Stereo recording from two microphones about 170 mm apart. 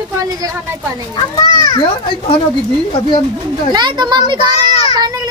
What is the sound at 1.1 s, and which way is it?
Speech, 25° left (ahead or behind).